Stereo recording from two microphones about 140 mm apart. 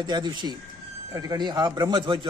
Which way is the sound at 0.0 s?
30° right (ahead or behind).